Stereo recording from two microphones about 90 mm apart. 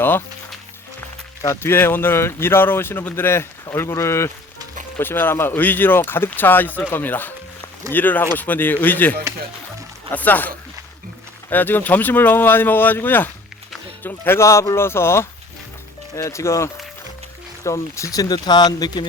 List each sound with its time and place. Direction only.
0.0 s speech: 25° left (ahead or behind)
1.4 s speech: 30° left (ahead or behind)
11.5 s speech: 20° left (ahead or behind); by 19.0 s 55° left (ahead or behind)